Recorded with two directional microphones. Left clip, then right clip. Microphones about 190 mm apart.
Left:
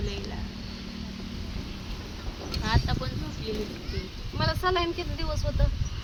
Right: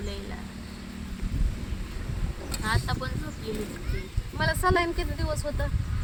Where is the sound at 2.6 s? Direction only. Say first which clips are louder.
Right 1 dB; 25° left (ahead or behind).